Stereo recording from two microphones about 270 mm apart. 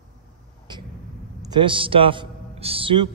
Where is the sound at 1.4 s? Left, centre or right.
Centre.